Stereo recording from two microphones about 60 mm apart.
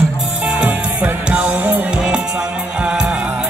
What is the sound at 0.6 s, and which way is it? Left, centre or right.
Music, right.